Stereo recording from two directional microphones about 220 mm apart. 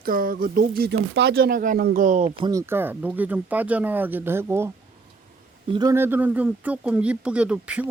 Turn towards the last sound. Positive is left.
turn(degrees=-5)  # may be behind; listen again after turning